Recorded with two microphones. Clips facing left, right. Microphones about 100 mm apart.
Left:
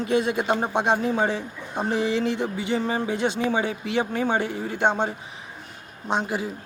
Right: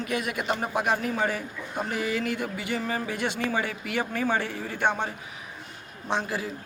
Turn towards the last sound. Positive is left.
turn(degrees=20)  # may be behind; listen again after turning